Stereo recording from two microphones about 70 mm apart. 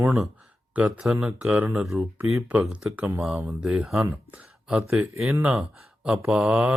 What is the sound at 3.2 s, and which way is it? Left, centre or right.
Speech, centre.